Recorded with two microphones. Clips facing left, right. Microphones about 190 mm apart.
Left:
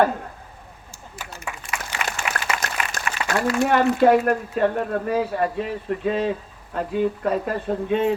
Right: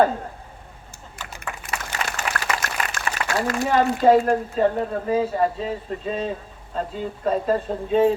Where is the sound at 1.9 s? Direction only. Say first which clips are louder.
Right 1 dB; 45° right (ahead or behind).